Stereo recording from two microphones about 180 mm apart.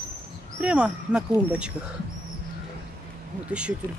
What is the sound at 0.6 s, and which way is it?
Speech, 5° right (ahead or behind).